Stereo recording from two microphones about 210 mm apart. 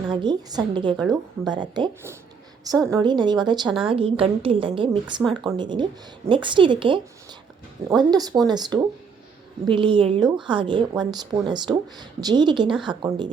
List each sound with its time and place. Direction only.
0.1 s speech: 20° right (ahead or behind)